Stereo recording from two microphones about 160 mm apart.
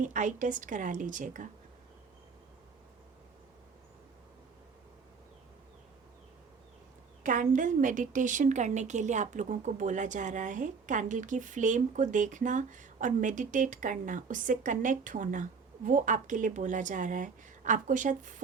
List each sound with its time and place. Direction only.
0.0 s a woman's voice: 50° right (ahead or behind)
7.2 s a woman's voice: 55° right (ahead or behind)